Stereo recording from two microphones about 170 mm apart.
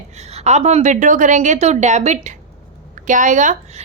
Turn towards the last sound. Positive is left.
turn(degrees=-45)  # may be behind; listen again after turning